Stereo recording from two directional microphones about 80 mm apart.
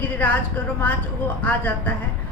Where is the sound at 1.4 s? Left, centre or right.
Centre.